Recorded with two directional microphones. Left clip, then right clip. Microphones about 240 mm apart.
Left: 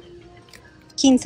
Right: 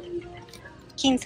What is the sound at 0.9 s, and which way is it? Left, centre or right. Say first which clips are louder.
Music: left 6 dB; left.